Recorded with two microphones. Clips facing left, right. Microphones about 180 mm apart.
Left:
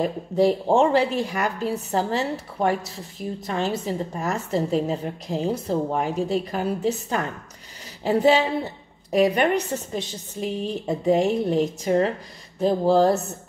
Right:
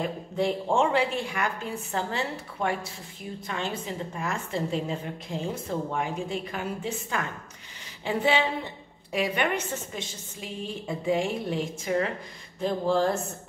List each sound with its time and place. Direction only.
0.0 s speech: 40° left (ahead or behind)